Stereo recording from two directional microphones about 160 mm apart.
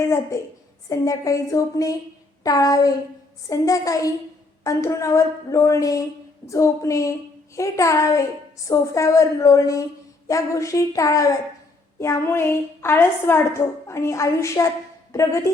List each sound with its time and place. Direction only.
0.1 s a woman's voice: 20° left (ahead or behind)